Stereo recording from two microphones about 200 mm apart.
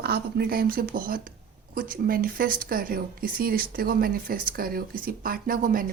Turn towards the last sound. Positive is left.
turn(degrees=-45)  # may be behind; listen again after turning